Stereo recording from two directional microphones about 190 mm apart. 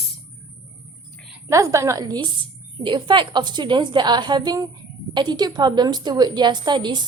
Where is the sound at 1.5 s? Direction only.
15° right (ahead or behind).